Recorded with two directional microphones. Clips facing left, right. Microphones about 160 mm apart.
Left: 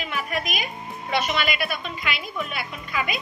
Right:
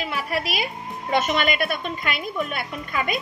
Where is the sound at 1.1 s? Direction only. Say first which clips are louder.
Right 3 dB; 45° right (ahead or behind).